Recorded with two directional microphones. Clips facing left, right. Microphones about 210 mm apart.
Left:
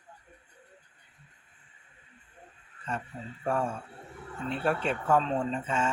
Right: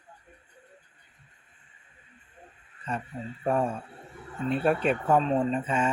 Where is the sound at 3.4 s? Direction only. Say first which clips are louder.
Right 3 dB; 20° right (ahead or behind).